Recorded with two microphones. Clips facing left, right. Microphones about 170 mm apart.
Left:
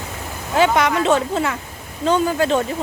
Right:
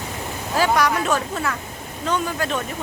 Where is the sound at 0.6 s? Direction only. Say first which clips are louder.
Left 3 dB; 20° left (ahead or behind).